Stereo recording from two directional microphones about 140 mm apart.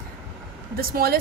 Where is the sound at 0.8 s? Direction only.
90° right.